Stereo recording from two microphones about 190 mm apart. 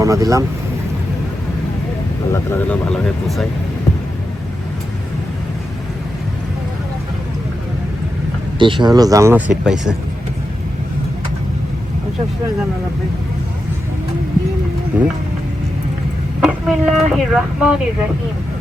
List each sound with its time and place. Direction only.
0.0 s speech: 15° right (ahead or behind)
2.3 s speech: 10° left (ahead or behind)
8.5 s speech: 25° right (ahead or behind)
9.5 s speech: 5° right (ahead or behind)
14.9 s speech: 10° right (ahead or behind)
16.4 s speech: centre (ahead or behind)